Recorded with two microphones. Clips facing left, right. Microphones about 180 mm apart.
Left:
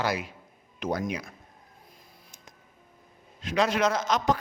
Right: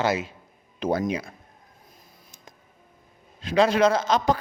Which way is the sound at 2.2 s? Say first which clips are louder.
Right 3 dB; 35° right (ahead or behind).